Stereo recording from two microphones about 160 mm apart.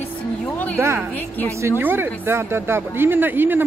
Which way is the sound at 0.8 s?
15° right (ahead or behind).